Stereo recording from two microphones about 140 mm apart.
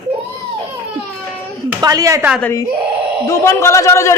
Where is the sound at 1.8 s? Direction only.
25° right (ahead or behind).